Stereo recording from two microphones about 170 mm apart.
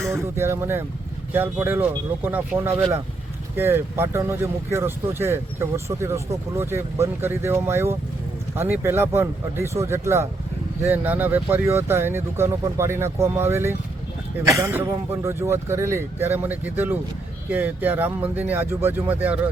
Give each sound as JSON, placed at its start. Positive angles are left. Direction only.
{"t": 0.0, "sound": "speech", "side_deg": -15}